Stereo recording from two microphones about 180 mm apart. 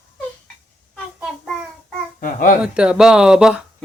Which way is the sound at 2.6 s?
5° right (ahead or behind).